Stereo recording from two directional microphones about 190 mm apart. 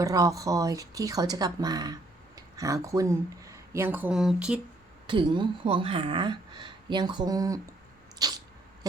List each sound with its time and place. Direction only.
0.0 s speech: 20° right (ahead or behind)
5.0 s speech: 25° right (ahead or behind)
8.2 s sneeze: 20° right (ahead or behind)